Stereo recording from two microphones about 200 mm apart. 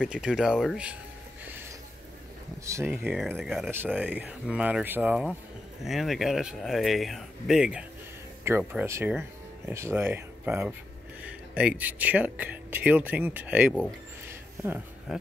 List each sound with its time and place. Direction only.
0.0 s speech: 5° right (ahead or behind)
2.6 s speech: 15° right (ahead or behind)